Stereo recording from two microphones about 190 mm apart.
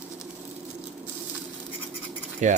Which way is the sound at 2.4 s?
40° right (ahead or behind).